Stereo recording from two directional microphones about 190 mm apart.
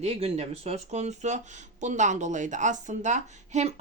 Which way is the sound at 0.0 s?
35° right (ahead or behind).